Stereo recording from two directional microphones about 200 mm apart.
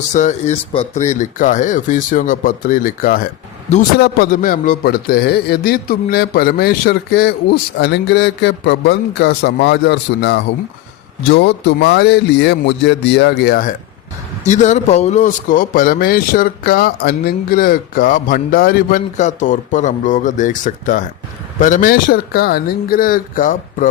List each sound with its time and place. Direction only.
0.1 s a man's voice: 35° left (ahead or behind)
14.4 s a man's voice: 35° left (ahead or behind)